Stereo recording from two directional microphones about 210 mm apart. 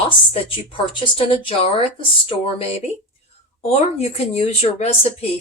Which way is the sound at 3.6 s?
30° left (ahead or behind).